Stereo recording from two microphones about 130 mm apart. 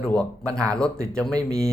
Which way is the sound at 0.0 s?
5° left (ahead or behind).